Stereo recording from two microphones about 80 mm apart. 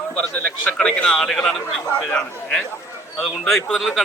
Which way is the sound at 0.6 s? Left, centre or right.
Centre.